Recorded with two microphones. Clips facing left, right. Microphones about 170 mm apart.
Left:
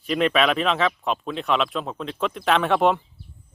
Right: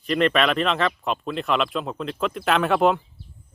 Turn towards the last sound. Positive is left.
turn(degrees=0)  # may be behind; listen again after turning